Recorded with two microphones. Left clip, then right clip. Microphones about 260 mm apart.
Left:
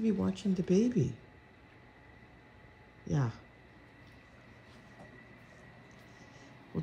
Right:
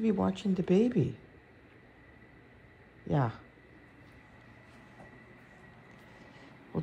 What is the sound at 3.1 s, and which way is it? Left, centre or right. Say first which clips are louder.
Speech: right 6 dB; centre.